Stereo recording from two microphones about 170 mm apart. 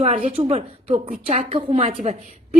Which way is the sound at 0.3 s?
35° right (ahead or behind).